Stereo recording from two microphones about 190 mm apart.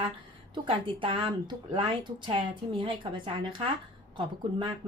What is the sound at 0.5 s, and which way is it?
A woman's voice, 25° right (ahead or behind).